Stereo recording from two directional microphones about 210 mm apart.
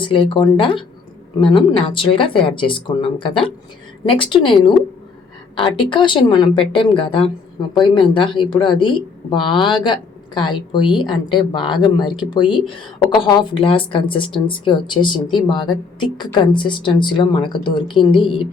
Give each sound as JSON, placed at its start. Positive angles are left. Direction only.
{"t": 0.0, "sound": "speech", "side_deg": 25}